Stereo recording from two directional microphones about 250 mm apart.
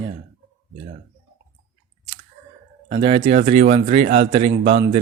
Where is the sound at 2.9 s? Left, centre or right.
Right.